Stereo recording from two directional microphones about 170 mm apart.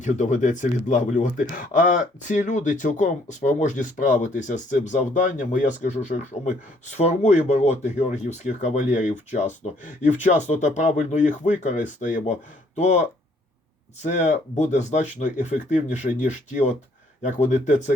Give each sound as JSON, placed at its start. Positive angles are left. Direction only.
{"t": 0.0, "sound": "speech", "side_deg": 45}